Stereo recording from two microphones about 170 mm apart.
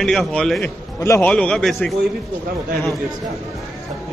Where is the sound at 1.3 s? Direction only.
5° left (ahead or behind).